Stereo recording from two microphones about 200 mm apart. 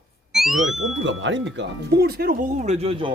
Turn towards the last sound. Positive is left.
turn(degrees=-25)  # may be behind; listen again after turning